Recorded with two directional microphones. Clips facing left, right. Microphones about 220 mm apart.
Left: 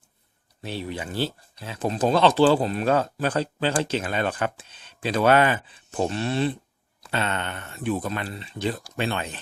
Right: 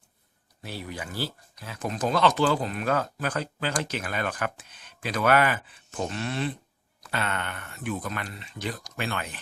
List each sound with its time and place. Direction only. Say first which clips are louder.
0.6 s speech: left 5 dB; 25° left (ahead or behind)